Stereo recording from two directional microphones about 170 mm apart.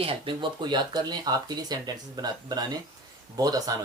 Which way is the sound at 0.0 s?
30° right (ahead or behind).